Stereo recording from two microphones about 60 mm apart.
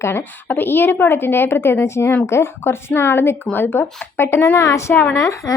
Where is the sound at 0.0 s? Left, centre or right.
Left.